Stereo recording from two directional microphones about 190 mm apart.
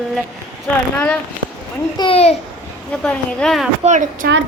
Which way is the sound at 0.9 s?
5° left (ahead or behind).